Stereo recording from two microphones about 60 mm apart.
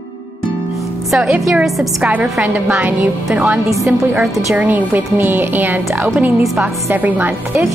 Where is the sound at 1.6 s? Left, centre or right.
Centre.